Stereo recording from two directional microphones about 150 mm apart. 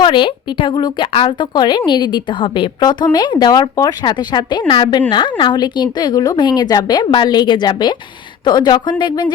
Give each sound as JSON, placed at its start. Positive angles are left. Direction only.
{"t": 0.0, "sound": "a woman's voice", "side_deg": 30}